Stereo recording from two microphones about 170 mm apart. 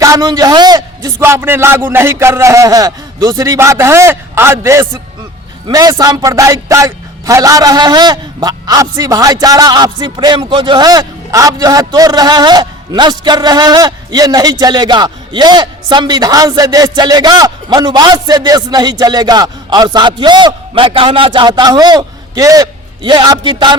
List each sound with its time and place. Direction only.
0.0 s a man's voice: 20° right (ahead or behind)